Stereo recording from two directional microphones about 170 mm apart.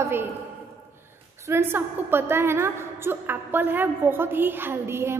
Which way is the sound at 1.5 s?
15° right (ahead or behind).